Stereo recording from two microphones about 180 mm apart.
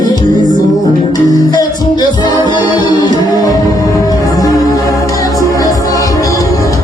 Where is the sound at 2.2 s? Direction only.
25° left (ahead or behind).